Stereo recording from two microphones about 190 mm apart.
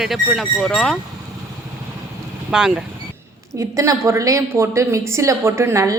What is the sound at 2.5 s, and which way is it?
Speech, 5° right (ahead or behind).